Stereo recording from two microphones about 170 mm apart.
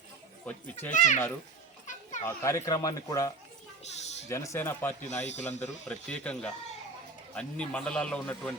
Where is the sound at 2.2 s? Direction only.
20° left (ahead or behind).